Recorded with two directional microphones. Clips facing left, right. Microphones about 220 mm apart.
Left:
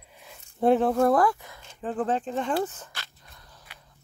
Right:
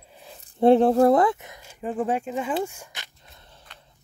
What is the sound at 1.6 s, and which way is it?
Speech, 10° right (ahead or behind).